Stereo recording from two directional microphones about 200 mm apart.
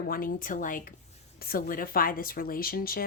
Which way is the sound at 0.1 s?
45° left (ahead or behind).